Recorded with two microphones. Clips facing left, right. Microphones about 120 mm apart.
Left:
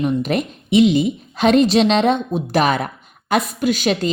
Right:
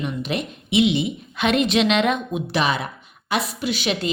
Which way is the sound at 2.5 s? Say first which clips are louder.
Left 5 dB; 50° left (ahead or behind).